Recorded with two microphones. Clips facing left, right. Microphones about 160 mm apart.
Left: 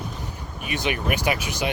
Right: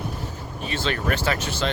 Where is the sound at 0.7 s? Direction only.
15° left (ahead or behind).